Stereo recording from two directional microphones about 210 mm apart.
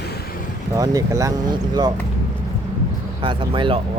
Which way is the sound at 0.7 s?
15° right (ahead or behind).